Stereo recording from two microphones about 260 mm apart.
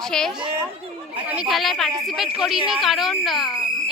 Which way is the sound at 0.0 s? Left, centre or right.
Centre.